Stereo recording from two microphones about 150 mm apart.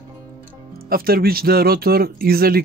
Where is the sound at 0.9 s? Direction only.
85° right.